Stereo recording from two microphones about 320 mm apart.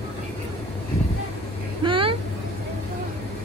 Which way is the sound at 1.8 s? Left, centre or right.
Centre.